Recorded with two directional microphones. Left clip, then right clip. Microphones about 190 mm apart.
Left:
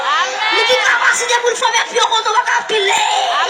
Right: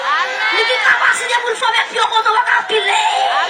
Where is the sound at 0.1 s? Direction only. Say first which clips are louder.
Even; 5° left (ahead or behind).